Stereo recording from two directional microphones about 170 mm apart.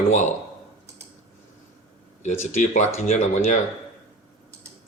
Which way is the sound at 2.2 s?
45° left (ahead or behind).